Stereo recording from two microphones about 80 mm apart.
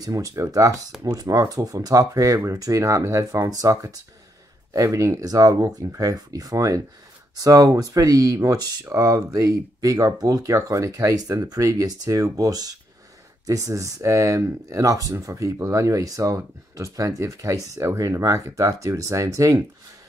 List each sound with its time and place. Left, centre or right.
0.0 s speech: right